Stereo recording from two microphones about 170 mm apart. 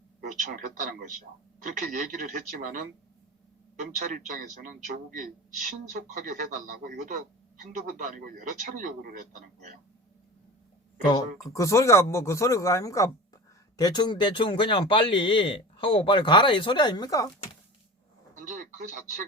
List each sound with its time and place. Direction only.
0.3 s speech: 50° right (ahead or behind)
3.9 s speech: 50° right (ahead or behind)
11.0 s speech: 25° left (ahead or behind)
18.3 s speech: 50° right (ahead or behind)